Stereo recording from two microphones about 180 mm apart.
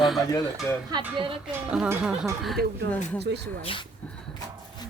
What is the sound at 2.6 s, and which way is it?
Speech, 60° right (ahead or behind).